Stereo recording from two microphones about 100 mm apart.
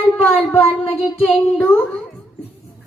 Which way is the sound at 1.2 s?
15° left (ahead or behind).